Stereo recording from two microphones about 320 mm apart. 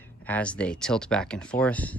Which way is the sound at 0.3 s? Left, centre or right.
Centre.